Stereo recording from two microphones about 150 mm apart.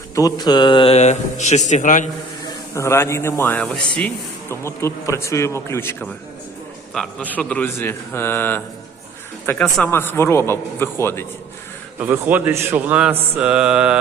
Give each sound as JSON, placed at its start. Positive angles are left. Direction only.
{"t": 0.2, "sound": "mantra", "side_deg": 25}
{"t": 0.9, "sound": "speech", "side_deg": 50}
{"t": 2.7, "sound": "speech", "side_deg": 20}
{"t": 6.9, "sound": "speech", "side_deg": 5}
{"t": 11.9, "sound": "a man's voice", "side_deg": -15}